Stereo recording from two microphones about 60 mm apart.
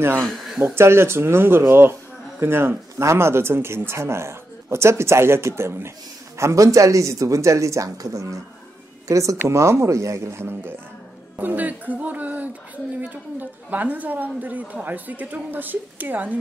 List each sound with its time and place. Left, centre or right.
0.2 s speech: centre
0.7 s speech: right
3.0 s speech: right
6.3 s speech: right
11.3 s a woman's voice: right